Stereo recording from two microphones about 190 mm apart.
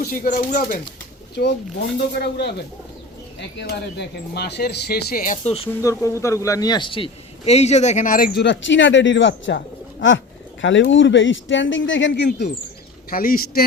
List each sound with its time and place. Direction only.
0.0 s speech: 50° left (ahead or behind)
1.4 s speech: 60° left (ahead or behind); by 5.6 s 35° left (ahead or behind)
5.8 s a man's voice: 15° left (ahead or behind); by 12.5 s 65° left (ahead or behind)
13.1 s speech: 50° left (ahead or behind)